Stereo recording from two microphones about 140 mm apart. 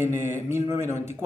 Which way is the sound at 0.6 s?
20° right (ahead or behind).